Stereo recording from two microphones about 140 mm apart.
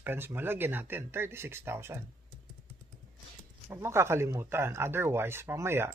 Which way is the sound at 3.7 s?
20° right (ahead or behind).